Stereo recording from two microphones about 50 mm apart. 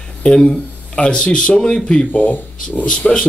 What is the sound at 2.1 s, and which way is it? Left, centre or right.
Speech, left.